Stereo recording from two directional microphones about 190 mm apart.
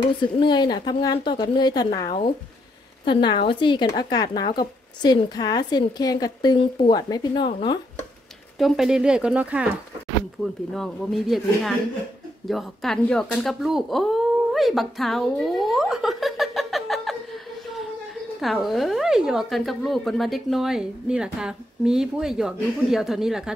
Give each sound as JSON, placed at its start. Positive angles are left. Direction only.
{"t": 0.2, "sound": "speech", "side_deg": 25}
{"t": 8.5, "sound": "a woman's voice", "side_deg": 0}
{"t": 18.4, "sound": "a woman's voice", "side_deg": 0}